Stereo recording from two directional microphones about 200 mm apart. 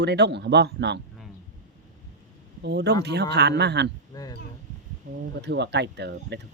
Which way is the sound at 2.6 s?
55° right (ahead or behind).